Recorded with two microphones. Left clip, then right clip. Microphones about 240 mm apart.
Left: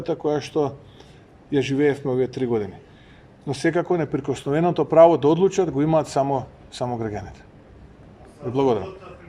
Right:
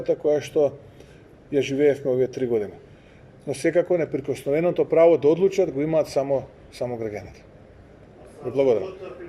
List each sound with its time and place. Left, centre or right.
0.3 s a man's voice: centre
8.5 s speech: centre